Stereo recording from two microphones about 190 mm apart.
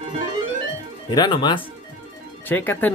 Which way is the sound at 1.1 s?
25° left (ahead or behind).